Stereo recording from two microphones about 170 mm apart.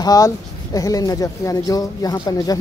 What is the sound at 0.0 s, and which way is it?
Speech, 20° left (ahead or behind).